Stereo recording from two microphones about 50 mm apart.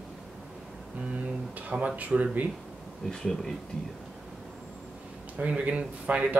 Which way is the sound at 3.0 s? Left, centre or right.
Centre.